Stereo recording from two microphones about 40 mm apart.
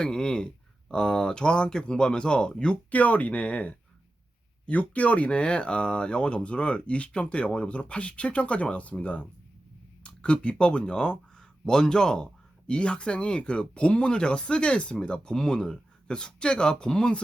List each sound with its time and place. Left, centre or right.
0.0 s speech: left
2.9 s speech: left